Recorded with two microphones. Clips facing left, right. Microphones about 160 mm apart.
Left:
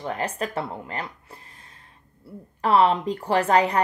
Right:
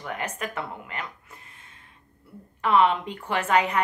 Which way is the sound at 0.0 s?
30° left (ahead or behind).